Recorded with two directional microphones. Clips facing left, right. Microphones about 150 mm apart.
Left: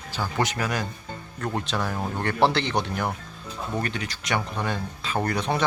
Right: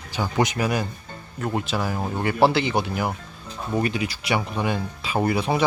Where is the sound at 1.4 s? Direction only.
5° right (ahead or behind).